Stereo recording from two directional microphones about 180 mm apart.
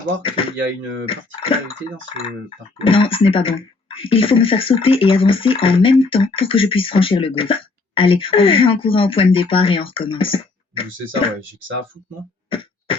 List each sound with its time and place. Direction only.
0.2 s speech: 30° left (ahead or behind)
2.7 s speech: 30° left (ahead or behind)